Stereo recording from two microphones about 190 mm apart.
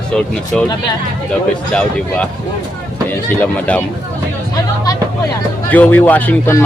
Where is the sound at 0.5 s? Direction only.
5° left (ahead or behind).